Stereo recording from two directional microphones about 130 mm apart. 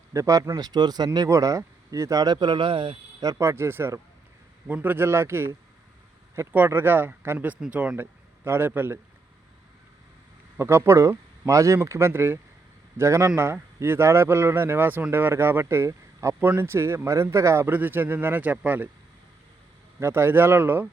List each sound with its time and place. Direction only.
0.1 s speech: 25° right (ahead or behind); by 3.0 s 40° right (ahead or behind)
3.2 s a man's voice: 25° right (ahead or behind)
10.6 s a man's voice: 20° right (ahead or behind)
20.0 s a man's voice: 20° right (ahead or behind)